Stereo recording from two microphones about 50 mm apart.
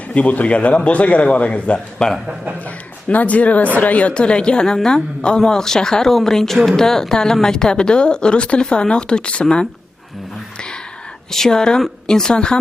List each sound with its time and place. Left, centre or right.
0.1 s a man's voice: left
3.1 s a man's voice: left
11.3 s a woman's voice: centre